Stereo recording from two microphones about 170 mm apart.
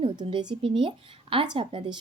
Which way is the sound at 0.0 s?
30° right (ahead or behind).